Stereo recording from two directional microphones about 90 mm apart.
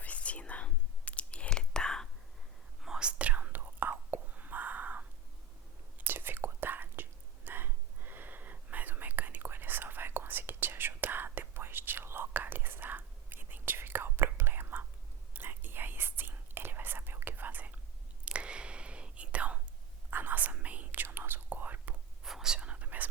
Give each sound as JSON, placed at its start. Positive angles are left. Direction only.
{"t": 0.0, "sound": "whispering", "side_deg": 15}
{"t": 2.8, "sound": "whispering", "side_deg": -10}
{"t": 22.2, "sound": "whispering", "side_deg": -5}